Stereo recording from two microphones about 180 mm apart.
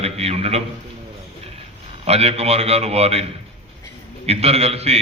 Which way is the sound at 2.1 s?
35° right (ahead or behind).